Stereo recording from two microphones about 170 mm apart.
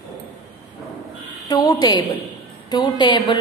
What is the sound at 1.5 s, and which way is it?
A woman's voice, 20° left (ahead or behind).